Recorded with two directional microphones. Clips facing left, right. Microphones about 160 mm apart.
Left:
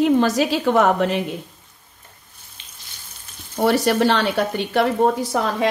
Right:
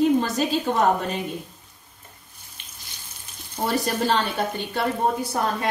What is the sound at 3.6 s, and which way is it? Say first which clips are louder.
A woman's voice: left 6 dB; 75° left (ahead or behind).